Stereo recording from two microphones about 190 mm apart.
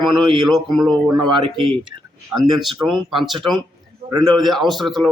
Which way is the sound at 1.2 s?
25° right (ahead or behind).